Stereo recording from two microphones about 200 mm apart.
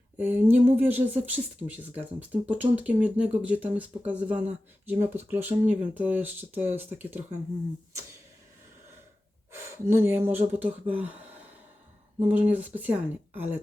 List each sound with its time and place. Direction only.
0.2 s speech: 10° right (ahead or behind)
9.5 s speech: 10° right (ahead or behind)
12.3 s speech: 10° right (ahead or behind)